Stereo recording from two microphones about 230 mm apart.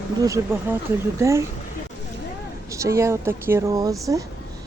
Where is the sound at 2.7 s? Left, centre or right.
Centre.